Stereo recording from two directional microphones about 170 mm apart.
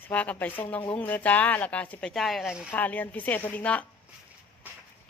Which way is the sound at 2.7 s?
10° left (ahead or behind).